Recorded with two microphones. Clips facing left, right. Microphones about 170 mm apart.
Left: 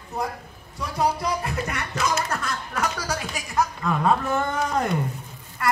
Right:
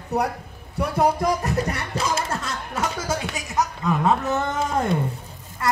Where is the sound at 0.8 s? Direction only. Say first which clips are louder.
Right 4 dB; 55° right (ahead or behind).